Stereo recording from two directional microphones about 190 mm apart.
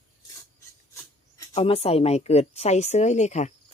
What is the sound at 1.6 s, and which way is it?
A woman's voice, 30° left (ahead or behind).